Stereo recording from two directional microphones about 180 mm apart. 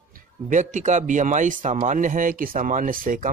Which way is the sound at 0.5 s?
40° right (ahead or behind).